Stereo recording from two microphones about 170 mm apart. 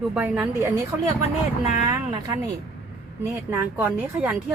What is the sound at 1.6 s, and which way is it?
Speech, 50° left (ahead or behind).